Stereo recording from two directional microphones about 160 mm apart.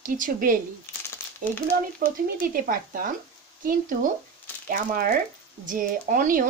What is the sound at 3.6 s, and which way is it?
Speech, 60° right (ahead or behind).